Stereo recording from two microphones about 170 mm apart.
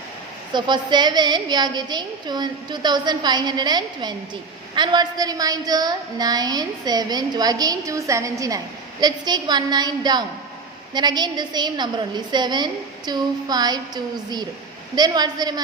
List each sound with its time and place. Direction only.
0.5 s a woman's voice: 25° right (ahead or behind)